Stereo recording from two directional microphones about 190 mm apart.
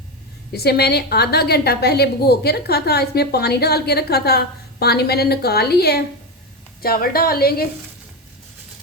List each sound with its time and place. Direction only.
0.5 s a woman's voice: 55° left (ahead or behind)